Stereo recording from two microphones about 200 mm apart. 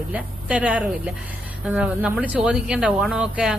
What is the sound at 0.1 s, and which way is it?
A woman's voice, 5° right (ahead or behind).